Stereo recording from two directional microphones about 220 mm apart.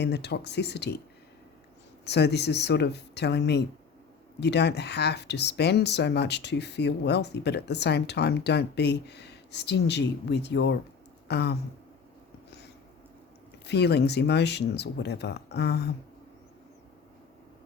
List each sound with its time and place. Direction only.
0.0 s speech: 50° left (ahead or behind)
2.0 s speech: 50° left (ahead or behind)
13.7 s speech: 50° left (ahead or behind)